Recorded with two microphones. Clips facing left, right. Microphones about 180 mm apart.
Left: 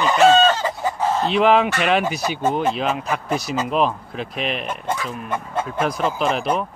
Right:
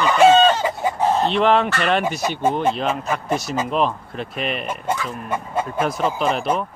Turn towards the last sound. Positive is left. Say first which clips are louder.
# even
turn(degrees=0)  # may be behind; listen again after turning